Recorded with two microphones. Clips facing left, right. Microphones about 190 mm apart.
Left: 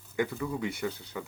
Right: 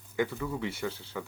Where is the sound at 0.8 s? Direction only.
15° left (ahead or behind).